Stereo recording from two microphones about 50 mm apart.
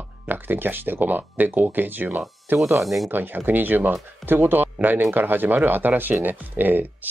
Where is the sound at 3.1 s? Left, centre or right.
Right.